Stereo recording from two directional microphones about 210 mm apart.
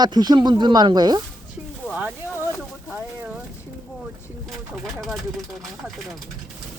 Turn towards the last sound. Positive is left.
turn(degrees=0)  # may be behind; listen again after turning